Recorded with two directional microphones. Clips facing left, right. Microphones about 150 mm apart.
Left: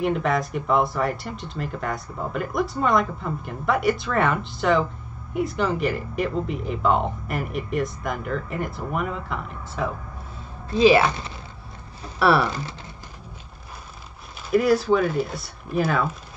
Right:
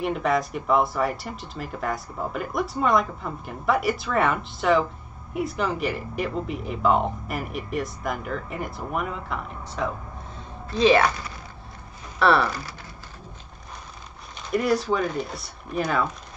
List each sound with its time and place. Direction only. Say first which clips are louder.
0.0 s speech: left 1 dB; centre (ahead or behind)
11.1 s speech: left 1 dB; 25° left (ahead or behind)
12.2 s speech: left 1 dB; 5° left (ahead or behind)
12.4 s speech: left 2 dB; 20° left (ahead or behind)
14.5 s speech: left 4 dB; centre (ahead or behind)